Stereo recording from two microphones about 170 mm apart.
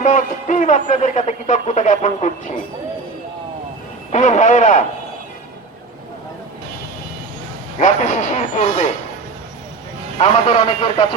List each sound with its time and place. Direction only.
0.0 s speech: 50° left (ahead or behind)
4.1 s speech: 45° left (ahead or behind)
7.8 s speech: 50° left (ahead or behind)
10.2 s a man's voice: 35° left (ahead or behind)